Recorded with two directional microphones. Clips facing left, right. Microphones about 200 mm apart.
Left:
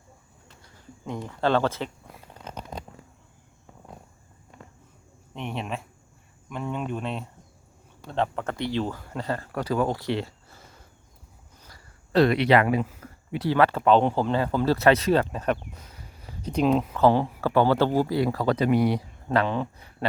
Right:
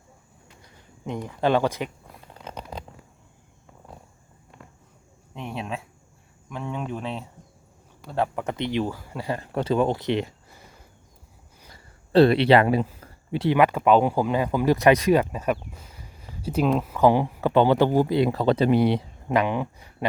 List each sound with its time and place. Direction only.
1.0 s speech: 15° right (ahead or behind)
6.5 s speech: centre (ahead or behind); by 10.6 s 20° right (ahead or behind)
11.7 s a sound: 30° right (ahead or behind)
13.5 s speech: 15° right (ahead or behind)
19.3 s speech: 15° right (ahead or behind)